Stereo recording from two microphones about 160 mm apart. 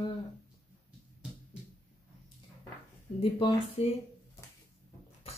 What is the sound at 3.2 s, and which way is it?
Speech, 35° left (ahead or behind).